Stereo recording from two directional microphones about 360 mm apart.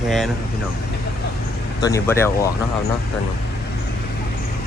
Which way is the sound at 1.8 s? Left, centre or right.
Centre.